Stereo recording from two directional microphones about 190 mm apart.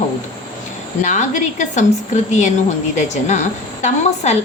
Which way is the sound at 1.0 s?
40° left (ahead or behind).